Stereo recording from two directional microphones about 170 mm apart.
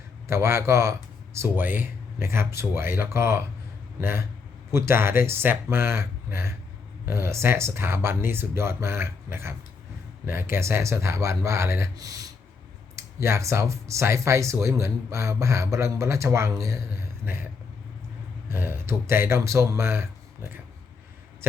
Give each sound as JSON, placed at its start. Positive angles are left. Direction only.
{"t": 0.3, "sound": "speech", "side_deg": -15}
{"t": 18.4, "sound": "speech", "side_deg": -15}